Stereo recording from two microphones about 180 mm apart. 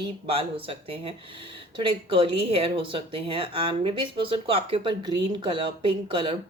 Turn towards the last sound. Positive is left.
turn(degrees=-30)  # may be behind; listen again after turning